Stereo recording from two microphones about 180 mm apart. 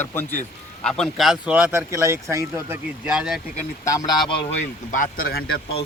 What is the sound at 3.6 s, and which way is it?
Speech, 20° left (ahead or behind).